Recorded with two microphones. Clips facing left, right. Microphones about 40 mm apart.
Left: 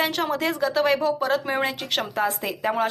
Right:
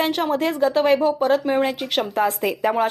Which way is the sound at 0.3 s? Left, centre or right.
Right.